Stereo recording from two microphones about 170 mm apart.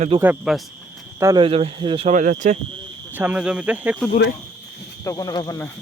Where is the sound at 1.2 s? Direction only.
20° right (ahead or behind).